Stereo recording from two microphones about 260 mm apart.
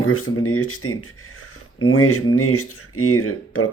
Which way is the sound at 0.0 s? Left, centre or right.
Left.